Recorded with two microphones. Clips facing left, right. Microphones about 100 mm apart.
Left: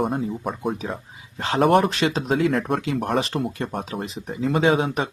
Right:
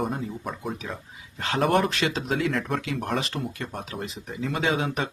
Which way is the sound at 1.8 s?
30° left (ahead or behind).